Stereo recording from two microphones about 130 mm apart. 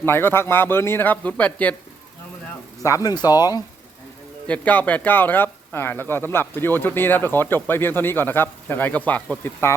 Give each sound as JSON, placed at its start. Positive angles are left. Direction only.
{"t": 0.0, "sound": "speech", "side_deg": 15}
{"t": 2.8, "sound": "speech", "side_deg": 25}
{"t": 4.4, "sound": "speech", "side_deg": 10}